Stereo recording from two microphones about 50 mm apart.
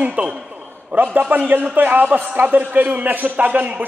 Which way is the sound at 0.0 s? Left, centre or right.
Right.